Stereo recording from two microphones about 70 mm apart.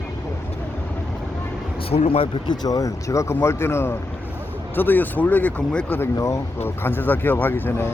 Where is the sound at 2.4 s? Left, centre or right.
Left; by 5.9 s centre.